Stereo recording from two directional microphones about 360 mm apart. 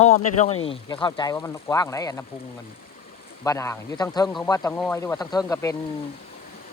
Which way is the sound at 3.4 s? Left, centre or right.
Centre.